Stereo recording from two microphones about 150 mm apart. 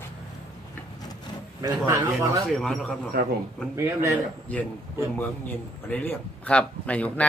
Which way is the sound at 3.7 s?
20° right (ahead or behind).